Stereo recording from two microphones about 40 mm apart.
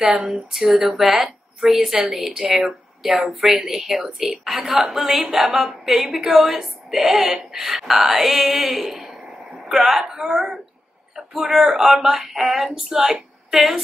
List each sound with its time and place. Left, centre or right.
0.0 s speech: right
0.3 s a woman's voice: centre
4.5 s a woman's voice: centre
13.5 s speech: centre